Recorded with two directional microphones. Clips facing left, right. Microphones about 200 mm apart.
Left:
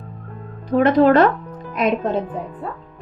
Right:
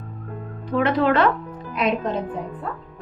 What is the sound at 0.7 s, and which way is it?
Speech, 40° left (ahead or behind).